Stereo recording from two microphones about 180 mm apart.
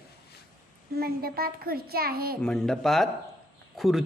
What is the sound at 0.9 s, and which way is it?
A child's voice, 55° right (ahead or behind).